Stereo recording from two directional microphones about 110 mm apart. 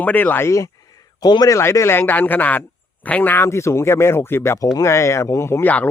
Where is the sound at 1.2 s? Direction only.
40° left (ahead or behind).